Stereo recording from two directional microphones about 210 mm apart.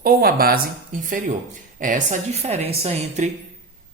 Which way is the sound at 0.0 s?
45° right (ahead or behind).